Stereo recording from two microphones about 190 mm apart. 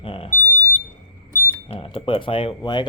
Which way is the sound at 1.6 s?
25° left (ahead or behind).